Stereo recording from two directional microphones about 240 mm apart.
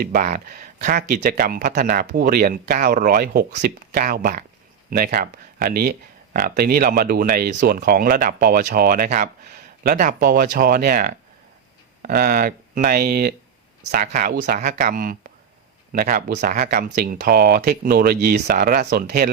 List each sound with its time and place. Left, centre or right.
0.0 s speech: right